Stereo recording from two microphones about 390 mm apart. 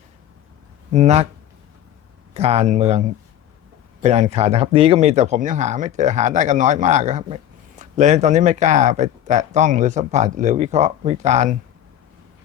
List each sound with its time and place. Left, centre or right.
0.9 s speech: centre
2.3 s speech: centre
4.0 s speech: centre